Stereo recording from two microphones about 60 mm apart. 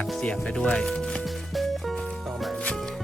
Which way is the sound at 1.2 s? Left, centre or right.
Centre.